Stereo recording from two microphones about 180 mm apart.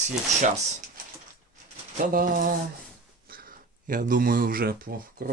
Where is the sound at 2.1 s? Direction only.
50° right (ahead or behind).